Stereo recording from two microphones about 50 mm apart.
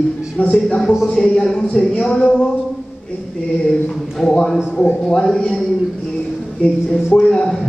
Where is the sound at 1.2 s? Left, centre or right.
Centre.